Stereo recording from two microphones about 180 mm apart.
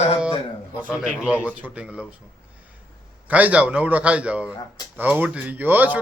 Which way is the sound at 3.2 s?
10° right (ahead or behind).